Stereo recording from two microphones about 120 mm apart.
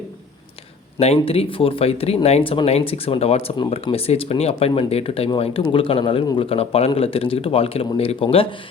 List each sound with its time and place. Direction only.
0.9 s a man's voice: 60° left (ahead or behind)